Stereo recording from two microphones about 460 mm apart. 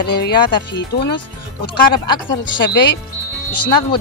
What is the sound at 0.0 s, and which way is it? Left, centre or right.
Speech, left.